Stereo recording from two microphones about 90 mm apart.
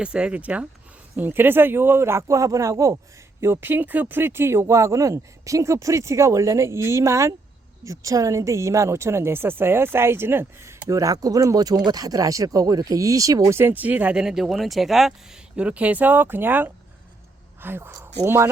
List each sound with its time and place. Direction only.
0.0 s speech: 10° right (ahead or behind); by 10.8 s 30° right (ahead or behind)
10.8 s speech: 40° right (ahead or behind)